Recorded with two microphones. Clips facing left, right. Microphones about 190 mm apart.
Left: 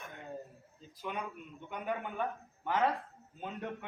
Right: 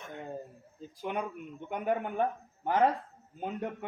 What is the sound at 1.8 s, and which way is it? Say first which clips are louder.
A man's voice: right 6 dB; 45° right (ahead or behind).